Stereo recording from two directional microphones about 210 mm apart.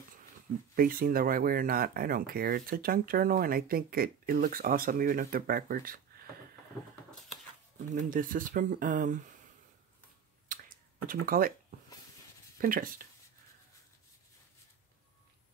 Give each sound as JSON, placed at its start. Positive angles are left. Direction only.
{"t": 0.7, "sound": "speech", "side_deg": -40}
{"t": 7.9, "sound": "speech", "side_deg": -40}
{"t": 10.5, "sound": "a sound", "side_deg": -40}
{"t": 11.1, "sound": "speech", "side_deg": -45}
{"t": 12.5, "sound": "speech", "side_deg": -40}